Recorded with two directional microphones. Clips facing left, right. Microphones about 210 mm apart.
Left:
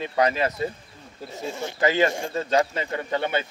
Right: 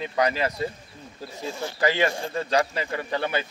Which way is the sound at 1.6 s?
20° left (ahead or behind).